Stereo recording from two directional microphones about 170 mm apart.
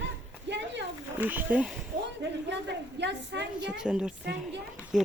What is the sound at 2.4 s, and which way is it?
A woman's voice, 90° right.